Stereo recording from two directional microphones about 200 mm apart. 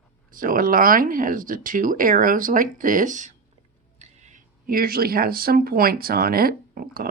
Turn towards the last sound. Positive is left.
turn(degrees=-45)  # may be behind; listen again after turning